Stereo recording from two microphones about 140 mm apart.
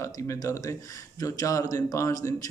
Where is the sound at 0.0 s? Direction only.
20° left (ahead or behind).